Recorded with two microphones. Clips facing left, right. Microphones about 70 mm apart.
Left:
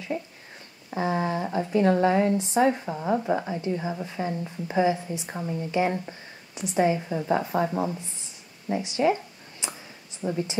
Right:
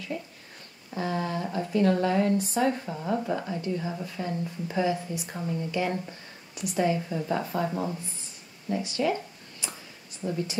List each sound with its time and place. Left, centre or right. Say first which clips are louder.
0.1 s speech: left 3 dB; left
8.6 s a sound: left 4 dB; left
10.2 s speech: left 2 dB; left